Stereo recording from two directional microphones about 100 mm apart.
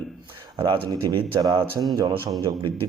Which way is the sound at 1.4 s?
45° right (ahead or behind).